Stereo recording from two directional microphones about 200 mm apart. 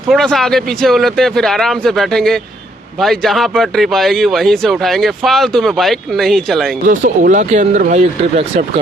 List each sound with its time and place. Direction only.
0.1 s speech: centre (ahead or behind)
6.8 s speech: 40° right (ahead or behind)